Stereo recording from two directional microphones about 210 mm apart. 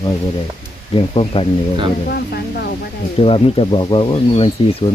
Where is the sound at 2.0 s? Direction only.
50° left (ahead or behind).